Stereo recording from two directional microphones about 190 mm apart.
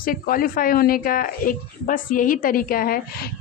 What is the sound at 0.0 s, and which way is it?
A woman's voice, 50° left (ahead or behind).